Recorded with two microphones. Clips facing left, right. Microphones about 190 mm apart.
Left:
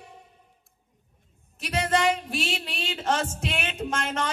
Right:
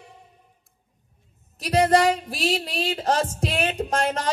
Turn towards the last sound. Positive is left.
turn(degrees=-35)  # may be behind; listen again after turning